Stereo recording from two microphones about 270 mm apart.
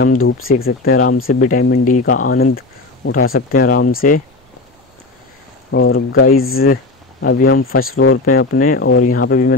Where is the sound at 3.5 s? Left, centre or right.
Left.